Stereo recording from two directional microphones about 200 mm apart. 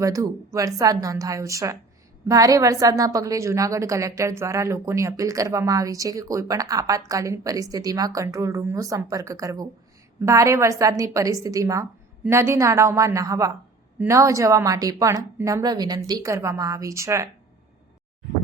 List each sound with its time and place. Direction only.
0.0 s a woman's voice: 15° right (ahead or behind)